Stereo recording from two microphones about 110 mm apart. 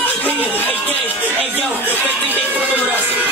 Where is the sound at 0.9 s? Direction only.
15° right (ahead or behind).